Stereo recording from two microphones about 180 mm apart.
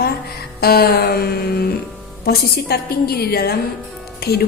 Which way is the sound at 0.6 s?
60° left (ahead or behind).